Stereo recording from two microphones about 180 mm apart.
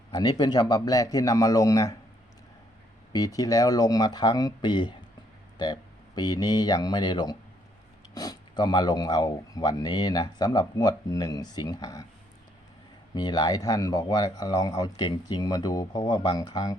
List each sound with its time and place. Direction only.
0.1 s speech: 25° left (ahead or behind)
3.1 s speech: 20° left (ahead or behind)
13.1 s speech: 20° left (ahead or behind)